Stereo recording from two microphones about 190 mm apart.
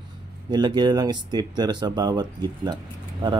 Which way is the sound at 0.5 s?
20° right (ahead or behind).